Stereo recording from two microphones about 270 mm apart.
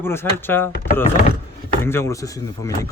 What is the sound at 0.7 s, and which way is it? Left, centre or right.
Speech, left.